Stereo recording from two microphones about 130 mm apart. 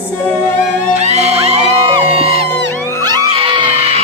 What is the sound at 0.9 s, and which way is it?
Music, 60° right (ahead or behind).